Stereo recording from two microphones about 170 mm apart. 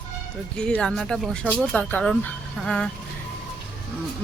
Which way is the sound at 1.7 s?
10° left (ahead or behind).